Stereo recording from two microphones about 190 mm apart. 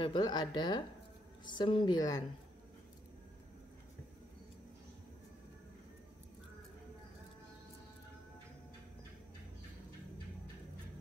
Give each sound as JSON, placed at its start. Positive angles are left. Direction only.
{"t": 0.0, "sound": "speech", "side_deg": 25}